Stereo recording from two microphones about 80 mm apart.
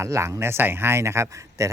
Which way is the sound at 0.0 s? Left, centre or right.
Right.